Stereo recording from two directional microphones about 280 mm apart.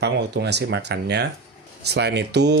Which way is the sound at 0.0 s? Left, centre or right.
Right.